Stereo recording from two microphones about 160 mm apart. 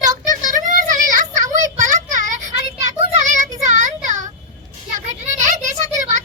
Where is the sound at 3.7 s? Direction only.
50° right (ahead or behind).